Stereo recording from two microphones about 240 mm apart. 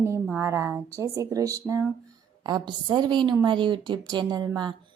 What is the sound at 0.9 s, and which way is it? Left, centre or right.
A woman's voice, centre.